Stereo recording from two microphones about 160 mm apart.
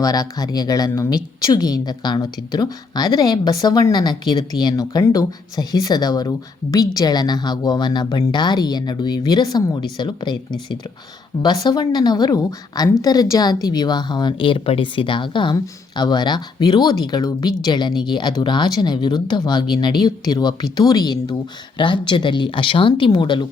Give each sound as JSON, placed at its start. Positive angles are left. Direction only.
{"t": 0.0, "sound": "speech", "side_deg": 25}